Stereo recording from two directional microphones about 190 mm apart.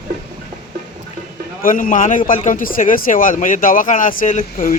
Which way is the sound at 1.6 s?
45° left (ahead or behind).